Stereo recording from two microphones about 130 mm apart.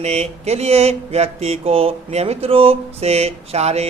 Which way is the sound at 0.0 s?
60° right (ahead or behind).